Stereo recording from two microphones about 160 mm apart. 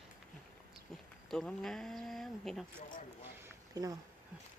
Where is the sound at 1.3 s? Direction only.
Centre (ahead or behind).